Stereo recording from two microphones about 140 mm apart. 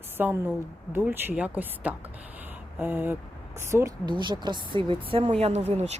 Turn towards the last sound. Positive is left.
turn(degrees=-50)  # may be behind; listen again after turning